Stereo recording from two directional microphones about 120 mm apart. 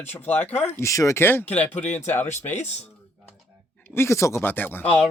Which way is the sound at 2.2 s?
70° left (ahead or behind).